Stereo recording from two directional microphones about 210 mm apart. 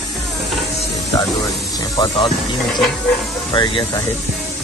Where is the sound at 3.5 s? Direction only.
20° left (ahead or behind).